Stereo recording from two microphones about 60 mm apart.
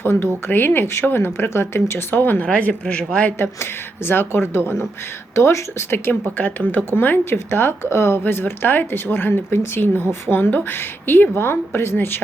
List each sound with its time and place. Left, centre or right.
0.0 s speech: left
2.5 s speech: left
2.8 s a man's voice: centre
3.3 s speech: left
5.3 s speech: left
6.1 s speech: left